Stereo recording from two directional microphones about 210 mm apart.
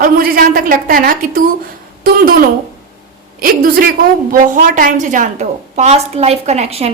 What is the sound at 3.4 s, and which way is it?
A woman's voice, 45° right (ahead or behind).